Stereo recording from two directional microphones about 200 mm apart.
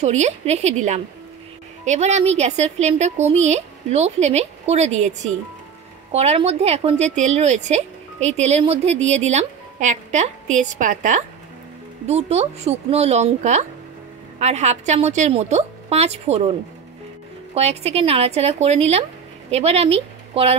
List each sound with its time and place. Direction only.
0.0 s speech: 35° right (ahead or behind)
6.1 s speech: 30° right (ahead or behind)
17.6 s speech: 30° right (ahead or behind)